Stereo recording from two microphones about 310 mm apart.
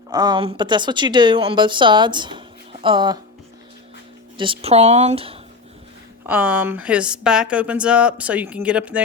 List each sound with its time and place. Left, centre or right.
0.1 s speech: centre
4.4 s speech: centre
6.2 s a woman's voice: centre